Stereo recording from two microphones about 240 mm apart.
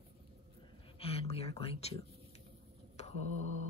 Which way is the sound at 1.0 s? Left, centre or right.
Left.